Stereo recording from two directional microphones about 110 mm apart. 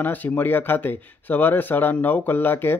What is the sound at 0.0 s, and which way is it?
Speech, 15° left (ahead or behind).